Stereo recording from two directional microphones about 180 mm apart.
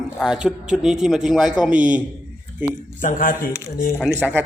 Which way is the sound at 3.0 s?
50° left (ahead or behind).